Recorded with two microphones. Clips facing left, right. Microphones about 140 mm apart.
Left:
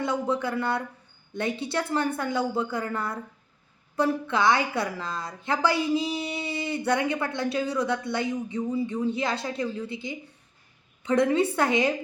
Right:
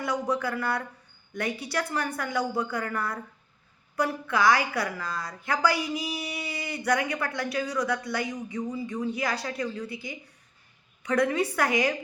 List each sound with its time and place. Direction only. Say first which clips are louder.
0.0 s a woman's voice: left 2 dB; 25° left (ahead or behind)